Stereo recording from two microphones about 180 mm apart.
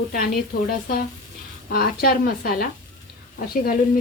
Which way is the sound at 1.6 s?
55° left (ahead or behind).